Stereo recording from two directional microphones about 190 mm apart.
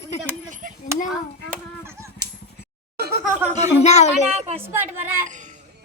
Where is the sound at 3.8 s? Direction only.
35° left (ahead or behind).